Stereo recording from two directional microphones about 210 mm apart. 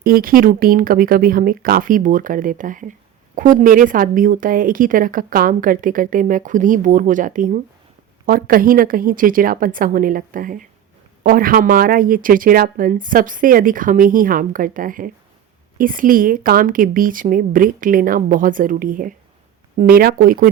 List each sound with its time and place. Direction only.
0.0 s a woman's voice: 45° right (ahead or behind)